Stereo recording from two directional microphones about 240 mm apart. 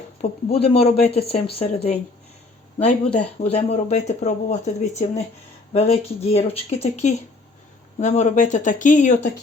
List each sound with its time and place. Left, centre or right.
0.2 s speech: left